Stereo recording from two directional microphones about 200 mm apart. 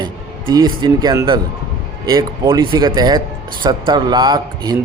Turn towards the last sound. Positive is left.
turn(degrees=-20)  # may be behind; listen again after turning